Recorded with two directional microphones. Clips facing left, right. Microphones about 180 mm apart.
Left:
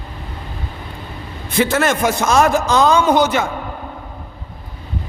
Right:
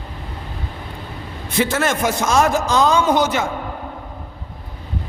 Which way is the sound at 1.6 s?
65° left (ahead or behind).